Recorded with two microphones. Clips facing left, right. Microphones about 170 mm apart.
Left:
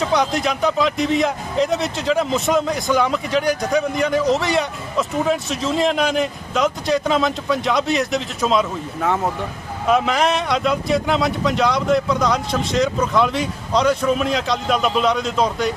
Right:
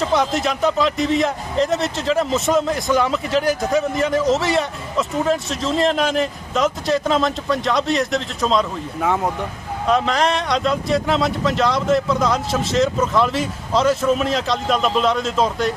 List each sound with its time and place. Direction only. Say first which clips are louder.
0.0 s a man's voice: even; centre (ahead or behind)